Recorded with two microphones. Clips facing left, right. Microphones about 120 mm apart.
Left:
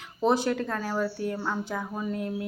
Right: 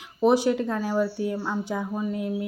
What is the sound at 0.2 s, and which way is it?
A woman's voice, 15° right (ahead or behind).